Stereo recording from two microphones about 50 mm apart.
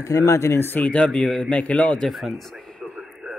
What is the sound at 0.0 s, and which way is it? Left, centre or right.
Speech, left.